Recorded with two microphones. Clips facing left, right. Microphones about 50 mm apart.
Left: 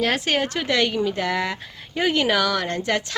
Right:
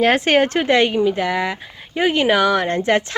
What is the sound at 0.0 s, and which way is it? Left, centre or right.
A woman's voice, right.